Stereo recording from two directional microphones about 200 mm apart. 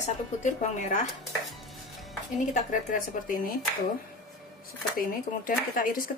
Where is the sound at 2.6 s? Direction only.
40° left (ahead or behind).